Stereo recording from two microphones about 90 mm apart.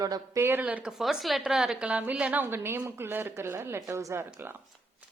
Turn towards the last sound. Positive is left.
turn(degrees=-25)  # may be behind; listen again after turning